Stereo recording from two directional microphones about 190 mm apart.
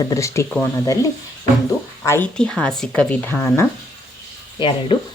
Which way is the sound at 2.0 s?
10° left (ahead or behind).